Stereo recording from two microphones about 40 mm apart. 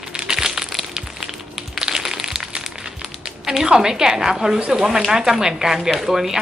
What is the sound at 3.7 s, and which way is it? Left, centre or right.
Speech, centre.